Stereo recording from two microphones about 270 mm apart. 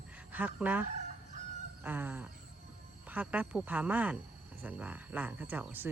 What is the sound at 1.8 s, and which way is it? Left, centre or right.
Speech, centre.